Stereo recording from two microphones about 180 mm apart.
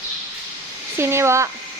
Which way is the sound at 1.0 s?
15° right (ahead or behind).